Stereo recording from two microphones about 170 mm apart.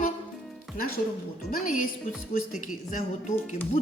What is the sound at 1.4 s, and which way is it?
A woman's voice, 55° left (ahead or behind).